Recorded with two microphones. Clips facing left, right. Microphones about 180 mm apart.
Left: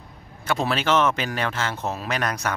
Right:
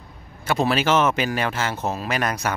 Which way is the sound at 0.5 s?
5° right (ahead or behind).